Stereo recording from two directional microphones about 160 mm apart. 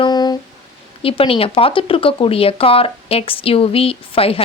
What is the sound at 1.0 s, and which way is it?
A woman's voice, 35° left (ahead or behind).